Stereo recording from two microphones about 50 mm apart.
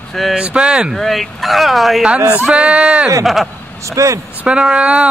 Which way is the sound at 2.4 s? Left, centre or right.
Right.